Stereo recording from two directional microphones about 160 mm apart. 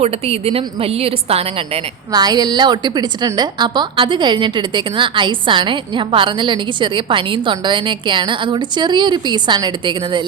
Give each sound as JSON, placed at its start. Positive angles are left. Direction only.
{"t": 0.0, "sound": "a woman's voice", "side_deg": -40}
{"t": 2.1, "sound": "a woman's voice", "side_deg": -25}